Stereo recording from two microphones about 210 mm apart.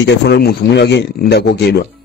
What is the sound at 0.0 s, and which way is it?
Speech, 55° left (ahead or behind).